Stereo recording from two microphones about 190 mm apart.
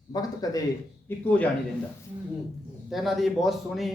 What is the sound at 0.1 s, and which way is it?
Speech, 20° left (ahead or behind).